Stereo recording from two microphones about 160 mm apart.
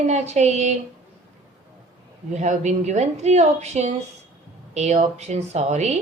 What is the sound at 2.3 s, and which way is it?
A woman's voice, 45° right (ahead or behind).